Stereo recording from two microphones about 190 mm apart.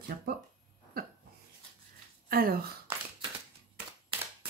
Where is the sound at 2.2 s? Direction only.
50° right (ahead or behind).